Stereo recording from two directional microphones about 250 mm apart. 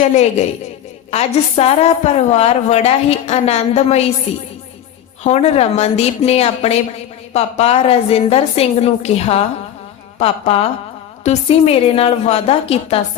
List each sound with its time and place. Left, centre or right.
0.0 s a woman's voice: left
5.2 s a woman's voice: left